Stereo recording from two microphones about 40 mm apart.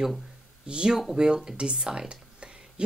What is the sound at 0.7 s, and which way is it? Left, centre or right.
A woman's voice, right.